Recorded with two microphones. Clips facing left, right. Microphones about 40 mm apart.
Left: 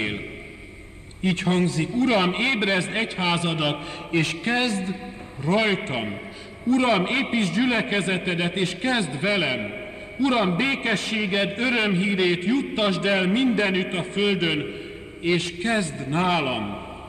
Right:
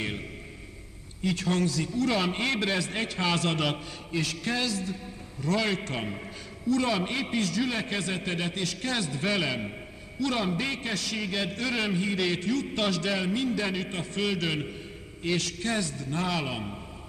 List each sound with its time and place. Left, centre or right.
1.2 s a man's voice: left
4.1 s a man's voice: left